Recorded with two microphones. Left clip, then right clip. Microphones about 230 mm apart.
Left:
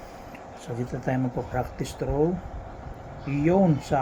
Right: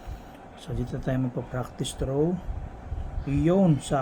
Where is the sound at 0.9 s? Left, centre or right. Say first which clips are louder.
Left 2 dB; right.